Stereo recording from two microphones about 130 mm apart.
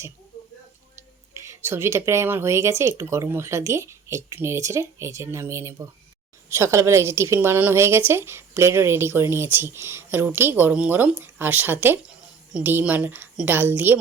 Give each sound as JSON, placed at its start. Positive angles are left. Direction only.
{"t": 1.3, "sound": "a woman's voice", "side_deg": -20}